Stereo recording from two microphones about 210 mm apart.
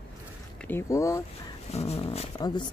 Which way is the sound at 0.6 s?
10° left (ahead or behind).